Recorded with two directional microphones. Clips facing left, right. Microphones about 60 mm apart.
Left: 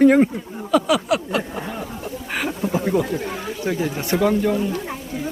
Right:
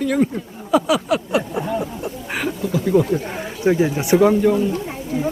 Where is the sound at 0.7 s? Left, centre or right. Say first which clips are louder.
Right 1 dB; centre.